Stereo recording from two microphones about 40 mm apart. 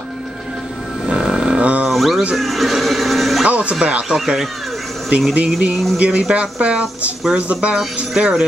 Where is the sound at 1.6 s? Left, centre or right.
Right.